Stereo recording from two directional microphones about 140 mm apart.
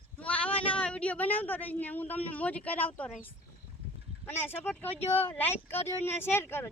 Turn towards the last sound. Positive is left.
turn(degrees=15)  # may be behind; listen again after turning